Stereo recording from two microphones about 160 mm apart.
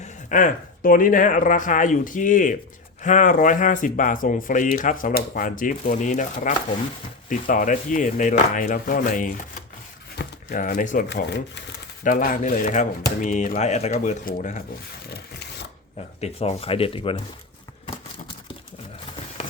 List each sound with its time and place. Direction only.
0.0 s speech: 50° left (ahead or behind)
10.2 s a sound: 65° left (ahead or behind)
11.1 s speech: 90° left
12.0 s speech: 60° left (ahead or behind)
15.1 s a sound: 90° left
16.2 s speech: 40° left (ahead or behind)